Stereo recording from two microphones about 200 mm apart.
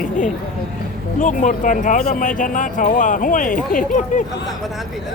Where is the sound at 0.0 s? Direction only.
40° left (ahead or behind).